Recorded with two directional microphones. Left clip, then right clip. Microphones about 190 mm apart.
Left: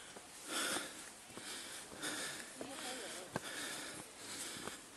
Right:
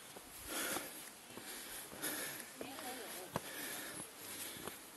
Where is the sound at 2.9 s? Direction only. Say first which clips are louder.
Even; 10° left (ahead or behind).